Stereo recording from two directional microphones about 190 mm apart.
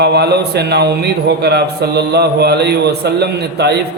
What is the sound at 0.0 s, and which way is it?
A man's voice, 60° right (ahead or behind).